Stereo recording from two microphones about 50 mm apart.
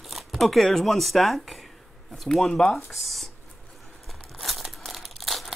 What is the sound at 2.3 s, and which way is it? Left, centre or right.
Speech, centre.